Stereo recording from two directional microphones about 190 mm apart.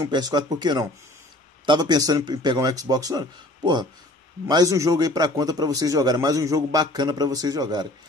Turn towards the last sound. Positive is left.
turn(degrees=-20)  # may be behind; listen again after turning